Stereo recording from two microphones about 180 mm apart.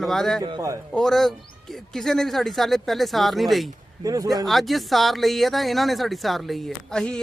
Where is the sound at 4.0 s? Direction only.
20° right (ahead or behind).